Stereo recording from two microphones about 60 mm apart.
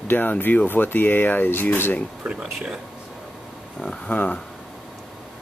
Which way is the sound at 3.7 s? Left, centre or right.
Centre.